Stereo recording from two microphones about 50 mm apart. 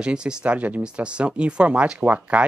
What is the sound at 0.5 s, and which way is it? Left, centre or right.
Speech, right.